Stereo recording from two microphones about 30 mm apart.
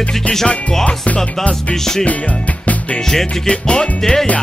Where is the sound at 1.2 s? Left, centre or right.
Centre.